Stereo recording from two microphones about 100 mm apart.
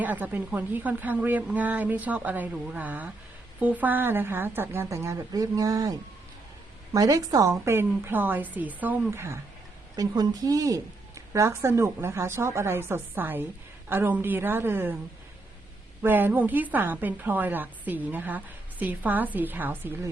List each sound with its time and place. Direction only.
0.0 s a woman's voice: 15° right (ahead or behind)
9.9 s a woman's voice: 40° right (ahead or behind)
11.3 s a woman's voice: 25° right (ahead or behind)
16.0 s a woman's voice: 20° right (ahead or behind)